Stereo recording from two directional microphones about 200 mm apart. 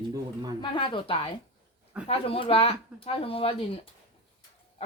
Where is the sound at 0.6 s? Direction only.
25° left (ahead or behind).